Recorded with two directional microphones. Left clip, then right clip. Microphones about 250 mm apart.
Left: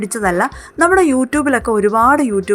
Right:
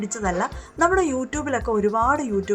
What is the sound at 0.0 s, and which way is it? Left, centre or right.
A woman's voice, left.